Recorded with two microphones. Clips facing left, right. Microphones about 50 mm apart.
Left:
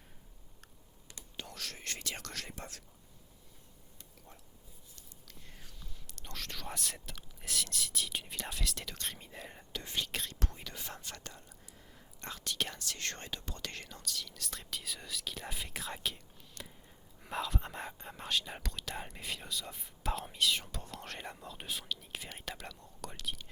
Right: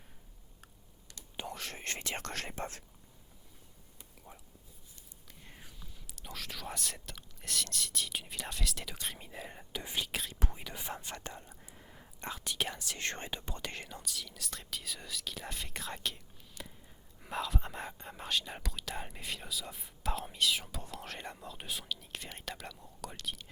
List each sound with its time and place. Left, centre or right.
1.4 s speech: right
4.9 s speech: centre